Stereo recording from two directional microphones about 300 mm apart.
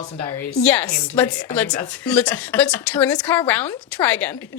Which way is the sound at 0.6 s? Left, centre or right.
Centre.